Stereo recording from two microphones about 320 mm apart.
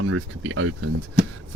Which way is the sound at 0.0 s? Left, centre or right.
Right.